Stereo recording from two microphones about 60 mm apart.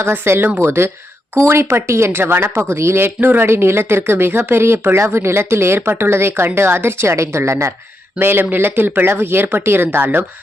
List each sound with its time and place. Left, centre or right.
0.0 s speech: right
8.2 s speech: right